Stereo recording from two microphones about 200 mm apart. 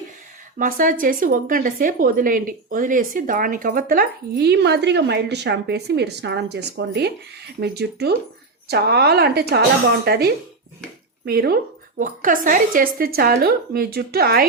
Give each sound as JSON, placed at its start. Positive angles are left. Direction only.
{"t": 0.6, "sound": "speech", "side_deg": -40}